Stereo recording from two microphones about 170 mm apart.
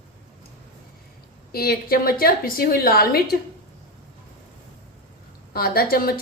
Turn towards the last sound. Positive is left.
turn(degrees=60)  # may be behind; listen again after turning